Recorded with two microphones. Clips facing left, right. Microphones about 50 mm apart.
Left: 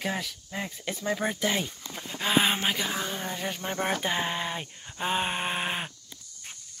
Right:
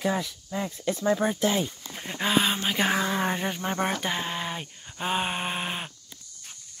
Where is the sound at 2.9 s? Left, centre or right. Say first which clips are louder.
Right 7 dB; right.